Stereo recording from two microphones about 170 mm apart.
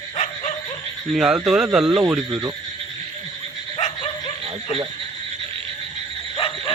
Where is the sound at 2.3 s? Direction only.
20° right (ahead or behind).